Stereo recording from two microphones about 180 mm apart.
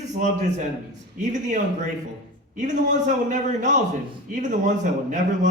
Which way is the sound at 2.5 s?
45° right (ahead or behind).